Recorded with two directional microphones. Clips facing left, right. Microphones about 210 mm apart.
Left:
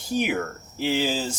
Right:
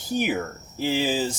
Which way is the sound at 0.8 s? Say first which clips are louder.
Right 1 dB; 5° right (ahead or behind).